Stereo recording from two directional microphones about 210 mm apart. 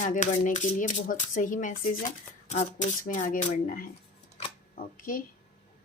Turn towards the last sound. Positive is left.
turn(degrees=40)  # may be behind; listen again after turning